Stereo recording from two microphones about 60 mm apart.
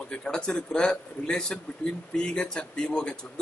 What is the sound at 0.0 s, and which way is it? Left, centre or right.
Speech, centre.